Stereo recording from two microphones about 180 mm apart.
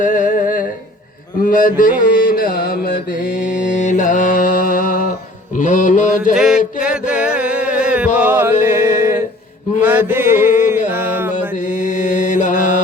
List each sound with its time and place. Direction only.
0.0 s humming: 45° left (ahead or behind)
1.5 s mantra: 50° left (ahead or behind)
3.5 s mantra: 40° left (ahead or behind)
6.3 s mantra: 5° right (ahead or behind)
6.8 s music: 5° right (ahead or behind)
9.8 s mantra: 10° right (ahead or behind)
10.8 s music: 10° right (ahead or behind)
11.5 s mantra: 45° left (ahead or behind)